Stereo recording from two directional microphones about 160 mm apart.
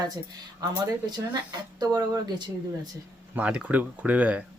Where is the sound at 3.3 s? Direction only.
10° right (ahead or behind).